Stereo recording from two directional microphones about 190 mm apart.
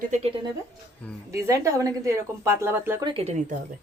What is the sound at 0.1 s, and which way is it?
Speech, 30° right (ahead or behind).